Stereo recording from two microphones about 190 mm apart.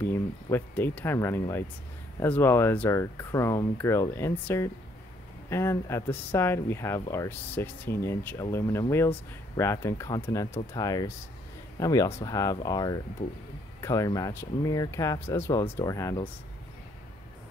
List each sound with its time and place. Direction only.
0.0 s speech: 10° left (ahead or behind)